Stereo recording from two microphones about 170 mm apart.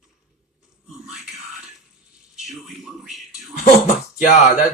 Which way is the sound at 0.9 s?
Centre (ahead or behind).